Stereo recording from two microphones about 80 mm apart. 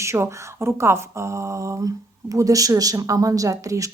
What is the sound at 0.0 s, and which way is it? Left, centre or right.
Speech, right.